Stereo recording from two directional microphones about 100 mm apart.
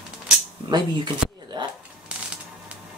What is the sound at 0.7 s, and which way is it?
Speech, 45° right (ahead or behind).